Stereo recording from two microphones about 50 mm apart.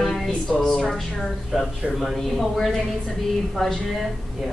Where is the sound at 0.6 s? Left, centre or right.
Centre.